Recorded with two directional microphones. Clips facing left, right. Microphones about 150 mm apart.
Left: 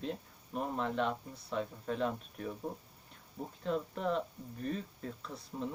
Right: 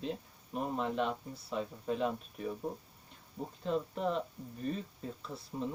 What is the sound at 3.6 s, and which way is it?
Speech, centre (ahead or behind).